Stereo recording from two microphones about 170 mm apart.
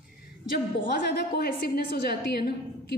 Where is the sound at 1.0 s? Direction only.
70° left (ahead or behind).